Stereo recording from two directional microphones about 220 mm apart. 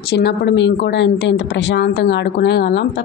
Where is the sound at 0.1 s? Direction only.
50° left (ahead or behind).